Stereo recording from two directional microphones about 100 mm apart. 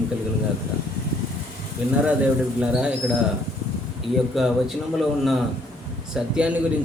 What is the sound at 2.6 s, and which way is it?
Speech, 10° right (ahead or behind).